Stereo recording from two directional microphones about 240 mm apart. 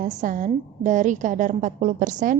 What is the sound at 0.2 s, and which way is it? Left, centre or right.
A woman's voice, right.